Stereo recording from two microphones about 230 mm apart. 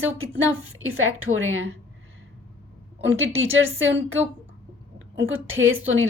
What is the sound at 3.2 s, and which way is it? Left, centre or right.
Speech, right.